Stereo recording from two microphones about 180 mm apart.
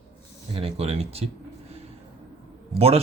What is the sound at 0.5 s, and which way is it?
Speech, 35° right (ahead or behind).